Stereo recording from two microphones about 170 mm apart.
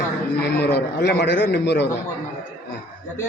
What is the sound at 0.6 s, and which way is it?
A man's voice, 80° left.